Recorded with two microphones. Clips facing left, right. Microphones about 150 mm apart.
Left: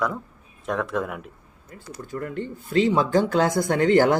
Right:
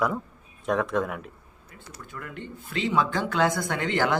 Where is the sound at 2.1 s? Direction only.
40° left (ahead or behind).